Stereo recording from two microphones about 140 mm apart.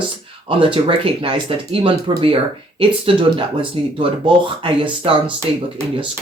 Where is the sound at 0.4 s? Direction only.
40° right (ahead or behind).